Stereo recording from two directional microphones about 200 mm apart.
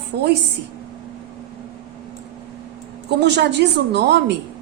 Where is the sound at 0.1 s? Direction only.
55° right (ahead or behind).